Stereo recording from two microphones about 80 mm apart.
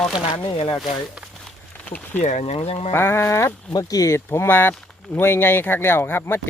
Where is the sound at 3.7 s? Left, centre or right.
Left.